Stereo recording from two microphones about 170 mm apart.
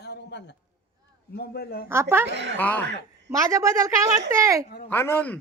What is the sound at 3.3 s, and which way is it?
A woman's voice, 20° right (ahead or behind).